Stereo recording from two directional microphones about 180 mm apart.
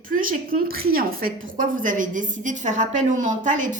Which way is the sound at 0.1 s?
50° right (ahead or behind).